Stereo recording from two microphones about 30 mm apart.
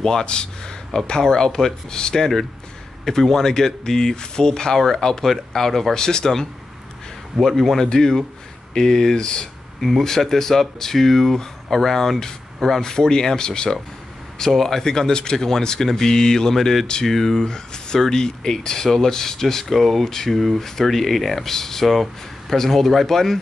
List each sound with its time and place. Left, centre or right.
0.0 s speech: left
4.7 s speech: centre
5.9 s speech: left
7.4 s speech: centre; by 9.5 s left
9.8 s speech: centre
10.0 s speech: centre
17.1 s speech: centre
19.7 s speech: centre
21.8 s speech: centre